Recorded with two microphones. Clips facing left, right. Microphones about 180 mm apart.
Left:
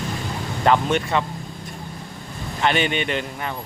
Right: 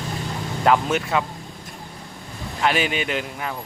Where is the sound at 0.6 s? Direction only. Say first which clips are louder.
Even; 5° right (ahead or behind).